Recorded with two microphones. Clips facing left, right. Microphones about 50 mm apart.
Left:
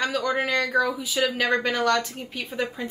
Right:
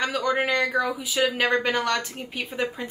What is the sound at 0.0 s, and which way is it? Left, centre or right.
A woman's voice, centre.